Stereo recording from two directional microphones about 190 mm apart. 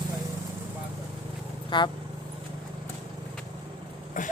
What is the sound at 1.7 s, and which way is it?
Speech, 25° left (ahead or behind).